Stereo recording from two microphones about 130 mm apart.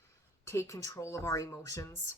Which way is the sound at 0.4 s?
20° left (ahead or behind).